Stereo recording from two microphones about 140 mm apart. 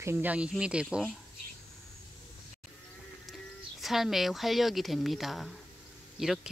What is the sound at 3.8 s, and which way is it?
Speech, centre (ahead or behind).